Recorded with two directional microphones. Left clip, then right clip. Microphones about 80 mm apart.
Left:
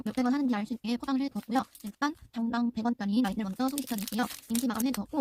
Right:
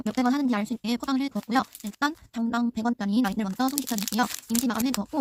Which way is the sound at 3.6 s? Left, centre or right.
Right.